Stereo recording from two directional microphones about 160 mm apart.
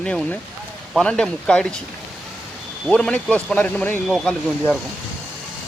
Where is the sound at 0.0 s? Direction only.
5° left (ahead or behind).